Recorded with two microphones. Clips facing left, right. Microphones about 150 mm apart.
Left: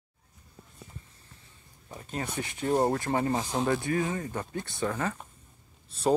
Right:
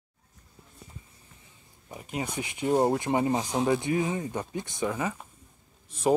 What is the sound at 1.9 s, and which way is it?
Speech, 15° right (ahead or behind).